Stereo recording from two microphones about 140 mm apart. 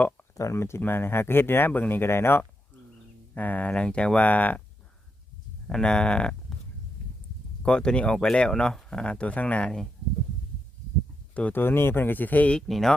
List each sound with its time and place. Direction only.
0.3 s speech: 20° left (ahead or behind)
5.6 s speech: 5° left (ahead or behind)
7.6 s speech: 5° left (ahead or behind)
11.3 s speech: 10° left (ahead or behind)